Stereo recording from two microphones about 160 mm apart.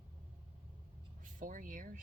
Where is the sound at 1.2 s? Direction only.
55° right (ahead or behind).